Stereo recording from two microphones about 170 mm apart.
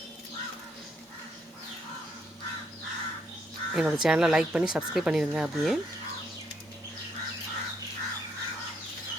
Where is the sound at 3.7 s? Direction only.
5° right (ahead or behind).